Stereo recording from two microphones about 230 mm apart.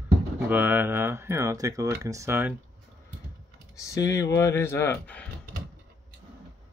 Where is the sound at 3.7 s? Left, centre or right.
Centre.